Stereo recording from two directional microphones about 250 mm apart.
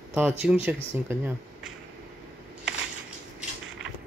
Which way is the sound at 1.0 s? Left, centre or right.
Centre.